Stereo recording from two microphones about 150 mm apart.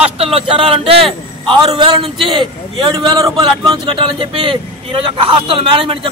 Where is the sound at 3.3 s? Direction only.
35° right (ahead or behind).